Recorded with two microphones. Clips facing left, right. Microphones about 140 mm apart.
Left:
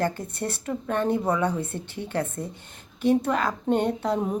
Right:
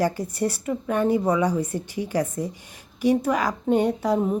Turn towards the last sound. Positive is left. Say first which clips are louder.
# right 3 dB
turn(degrees=-5)  # may be behind; listen again after turning